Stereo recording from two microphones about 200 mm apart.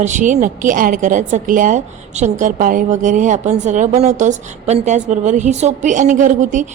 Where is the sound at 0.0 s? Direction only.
40° right (ahead or behind).